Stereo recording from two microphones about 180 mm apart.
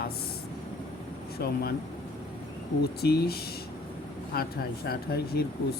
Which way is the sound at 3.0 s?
60° left (ahead or behind).